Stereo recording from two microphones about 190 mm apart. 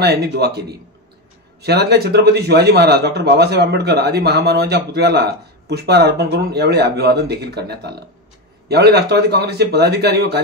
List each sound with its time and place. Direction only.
0.0 s speech: 55° right (ahead or behind)